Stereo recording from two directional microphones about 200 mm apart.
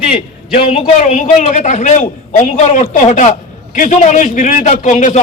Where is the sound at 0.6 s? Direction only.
35° left (ahead or behind).